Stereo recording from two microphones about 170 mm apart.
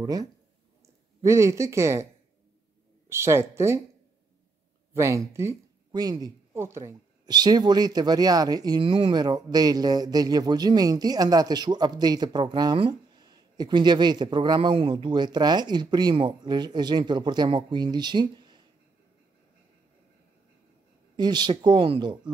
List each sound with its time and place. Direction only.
0.0 s speech: 20° right (ahead or behind)
3.1 s speech: 15° right (ahead or behind)
4.9 s speech: 15° right (ahead or behind)
21.2 s speech: 25° right (ahead or behind)